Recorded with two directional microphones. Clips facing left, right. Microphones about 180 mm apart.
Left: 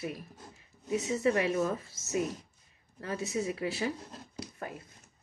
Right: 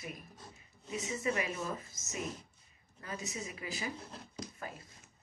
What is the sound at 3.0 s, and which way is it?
Speech, 65° left (ahead or behind).